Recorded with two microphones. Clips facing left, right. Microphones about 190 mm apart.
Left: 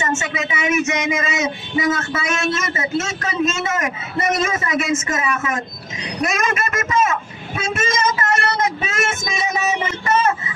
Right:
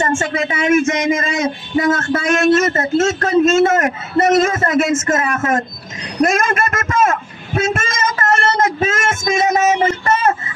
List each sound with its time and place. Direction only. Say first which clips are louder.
0.0 s speech: right 5 dB; 50° right (ahead or behind)
6.2 s vehicle: right 6 dB; 50° right (ahead or behind)